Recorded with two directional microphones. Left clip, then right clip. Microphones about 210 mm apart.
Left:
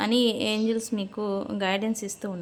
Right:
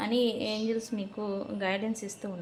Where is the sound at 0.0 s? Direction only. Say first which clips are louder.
Left 5 dB; 40° left (ahead or behind).